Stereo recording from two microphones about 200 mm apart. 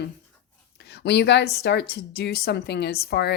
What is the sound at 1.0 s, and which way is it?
A woman's voice, 60° left (ahead or behind).